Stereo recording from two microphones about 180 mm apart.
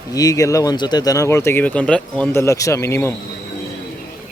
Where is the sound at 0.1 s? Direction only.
20° left (ahead or behind).